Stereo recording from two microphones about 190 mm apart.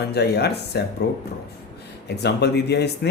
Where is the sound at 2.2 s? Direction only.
60° left (ahead or behind).